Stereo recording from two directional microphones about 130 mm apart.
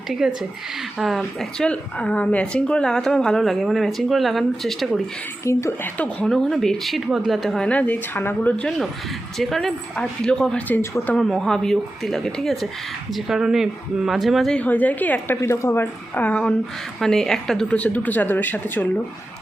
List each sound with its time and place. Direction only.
0.1 s a woman's voice: 5° right (ahead or behind)
5.5 s speech: 20° left (ahead or behind)
6.0 s a woman's voice: 5° left (ahead or behind)
10.8 s speech: 15° left (ahead or behind)
11.2 s a woman's voice: centre (ahead or behind)